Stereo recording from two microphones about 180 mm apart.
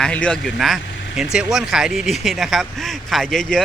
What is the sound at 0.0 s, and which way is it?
Speech, 5° left (ahead or behind).